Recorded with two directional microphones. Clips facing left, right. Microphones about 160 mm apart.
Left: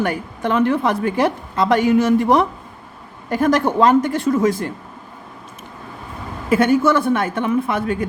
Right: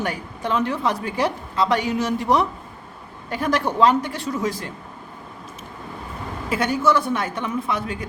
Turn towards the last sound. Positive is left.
turn(degrees=55)  # may be behind; listen again after turning